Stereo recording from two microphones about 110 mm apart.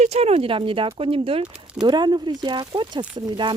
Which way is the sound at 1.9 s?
40° right (ahead or behind).